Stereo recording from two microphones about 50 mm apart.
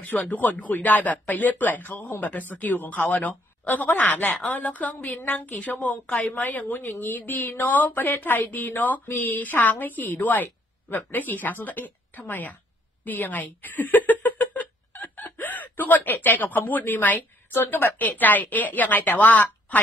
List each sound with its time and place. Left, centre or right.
0.0 s a woman's voice: left